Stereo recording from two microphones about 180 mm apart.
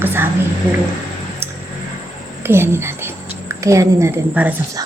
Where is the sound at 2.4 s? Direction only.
15° right (ahead or behind).